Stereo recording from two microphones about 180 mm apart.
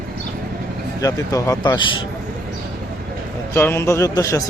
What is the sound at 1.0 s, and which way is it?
Speech, 20° left (ahead or behind).